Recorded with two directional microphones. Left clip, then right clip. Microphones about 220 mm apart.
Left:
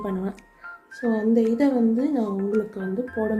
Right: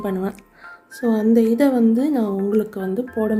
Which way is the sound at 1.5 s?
30° right (ahead or behind).